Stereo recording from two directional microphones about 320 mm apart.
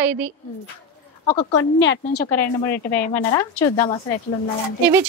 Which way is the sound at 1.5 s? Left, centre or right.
Left.